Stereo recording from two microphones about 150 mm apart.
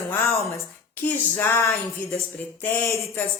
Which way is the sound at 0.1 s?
20° left (ahead or behind).